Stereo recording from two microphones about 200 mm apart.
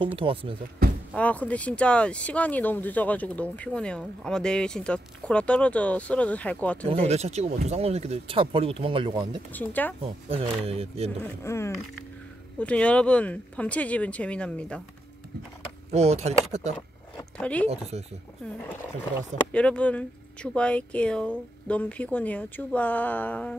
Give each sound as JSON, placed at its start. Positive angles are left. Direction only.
{"t": 0.0, "sound": "speech", "side_deg": -25}
{"t": 1.1, "sound": "speech", "side_deg": 5}
{"t": 6.9, "sound": "speech", "side_deg": -30}
{"t": 9.5, "sound": "speech", "side_deg": 10}
{"t": 10.0, "sound": "speech", "side_deg": -30}
{"t": 11.4, "sound": "speech", "side_deg": 15}
{"t": 15.9, "sound": "speech", "side_deg": -30}
{"t": 17.4, "sound": "speech", "side_deg": 5}
{"t": 17.9, "sound": "speech", "side_deg": -35}
{"t": 19.4, "sound": "speech", "side_deg": 5}